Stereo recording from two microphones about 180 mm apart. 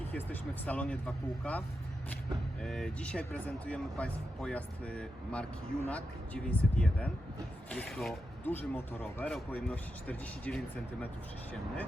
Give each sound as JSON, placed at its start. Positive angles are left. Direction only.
{"t": 0.1, "sound": "speech", "side_deg": 10}